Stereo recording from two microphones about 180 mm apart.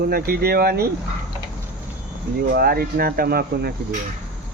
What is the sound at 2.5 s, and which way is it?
Speech, 55° right (ahead or behind).